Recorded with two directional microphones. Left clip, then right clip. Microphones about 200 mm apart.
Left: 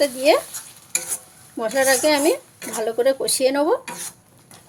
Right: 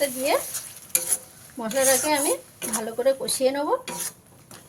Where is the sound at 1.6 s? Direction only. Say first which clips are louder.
Left 5 dB; 50° left (ahead or behind).